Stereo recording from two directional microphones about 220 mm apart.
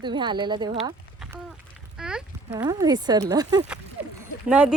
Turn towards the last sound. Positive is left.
turn(degrees=-5)  # may be behind; listen again after turning